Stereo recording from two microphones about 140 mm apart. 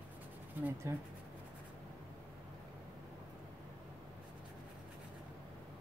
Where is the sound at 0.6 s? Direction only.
15° right (ahead or behind).